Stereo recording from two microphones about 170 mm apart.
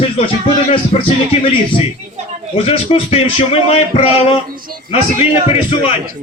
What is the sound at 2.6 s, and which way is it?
Speech, 35° left (ahead or behind).